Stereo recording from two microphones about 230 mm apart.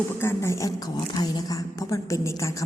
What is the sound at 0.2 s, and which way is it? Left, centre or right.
A woman's voice, centre.